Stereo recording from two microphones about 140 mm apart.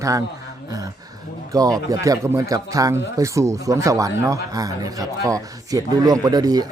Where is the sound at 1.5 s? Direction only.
25° right (ahead or behind).